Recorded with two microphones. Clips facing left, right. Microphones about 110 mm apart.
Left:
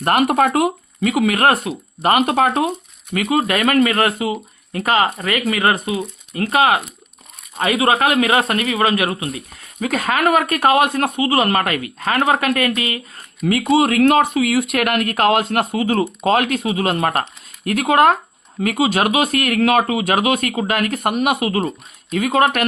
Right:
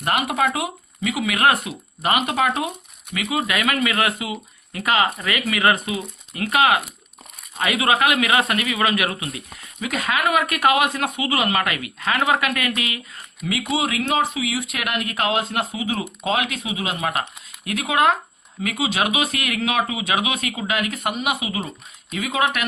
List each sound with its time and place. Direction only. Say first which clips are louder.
0.0 s speech: left 6 dB; 50° left (ahead or behind)